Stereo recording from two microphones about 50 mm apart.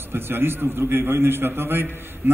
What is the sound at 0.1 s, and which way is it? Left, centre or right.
A man's voice, right.